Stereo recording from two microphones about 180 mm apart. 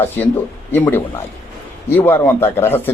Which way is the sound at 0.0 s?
10° left (ahead or behind).